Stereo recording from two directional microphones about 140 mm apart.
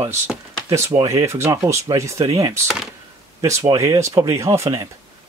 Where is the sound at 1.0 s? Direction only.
20° right (ahead or behind).